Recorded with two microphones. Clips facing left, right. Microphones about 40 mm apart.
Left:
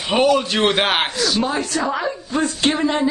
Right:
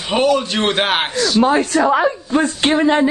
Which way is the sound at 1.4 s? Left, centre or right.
Right.